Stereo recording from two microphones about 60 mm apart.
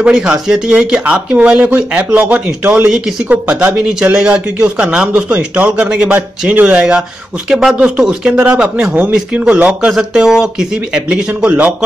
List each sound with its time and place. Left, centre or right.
0.0 s speech: centre
6.5 s speech: right
7.0 s speech: centre